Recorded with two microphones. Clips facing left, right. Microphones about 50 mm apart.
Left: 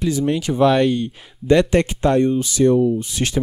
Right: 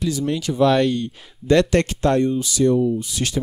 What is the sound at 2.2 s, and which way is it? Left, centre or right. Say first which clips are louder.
Speech: left 2 dB; left.